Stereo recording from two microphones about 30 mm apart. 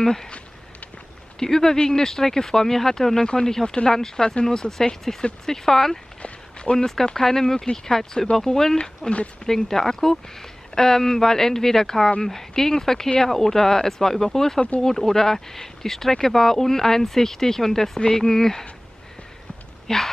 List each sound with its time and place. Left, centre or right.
0.0 s speech: centre
1.4 s speech: centre
6.2 s a sound: left
7.2 s speech: centre
19.9 s speech: left